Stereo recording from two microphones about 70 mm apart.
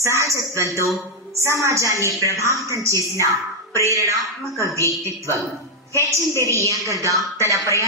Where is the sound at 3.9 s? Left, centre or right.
Right.